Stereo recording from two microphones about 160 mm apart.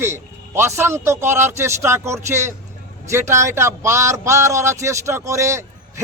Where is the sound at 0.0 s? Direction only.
15° right (ahead or behind).